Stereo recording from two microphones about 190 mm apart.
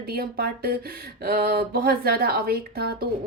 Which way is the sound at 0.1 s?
55° right (ahead or behind).